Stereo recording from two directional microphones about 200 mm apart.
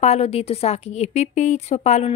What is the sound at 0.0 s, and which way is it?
A woman's voice, 30° left (ahead or behind).